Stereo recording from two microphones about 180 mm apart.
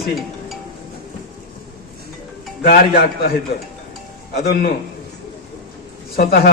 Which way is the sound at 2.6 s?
55° left (ahead or behind).